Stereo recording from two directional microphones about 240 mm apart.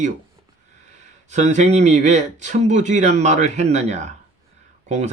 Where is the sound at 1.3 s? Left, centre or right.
Right.